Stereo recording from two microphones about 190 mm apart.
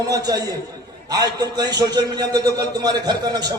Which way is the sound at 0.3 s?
20° right (ahead or behind).